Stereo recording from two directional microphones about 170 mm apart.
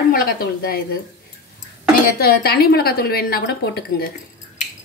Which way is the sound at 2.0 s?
65° left (ahead or behind).